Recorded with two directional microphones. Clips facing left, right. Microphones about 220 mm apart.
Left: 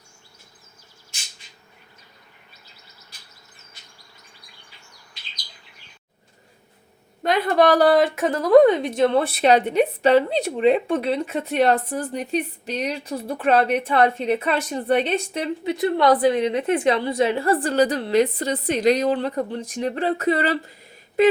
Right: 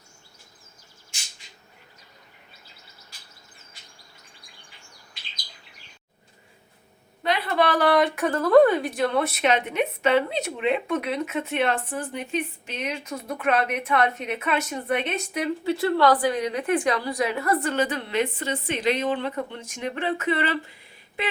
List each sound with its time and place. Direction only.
7.2 s a woman's voice: 45° left (ahead or behind)
8.1 s a woman's voice: 20° left (ahead or behind); by 21.3 s 40° left (ahead or behind)